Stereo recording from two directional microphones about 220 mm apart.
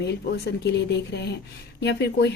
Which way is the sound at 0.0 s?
50° left (ahead or behind).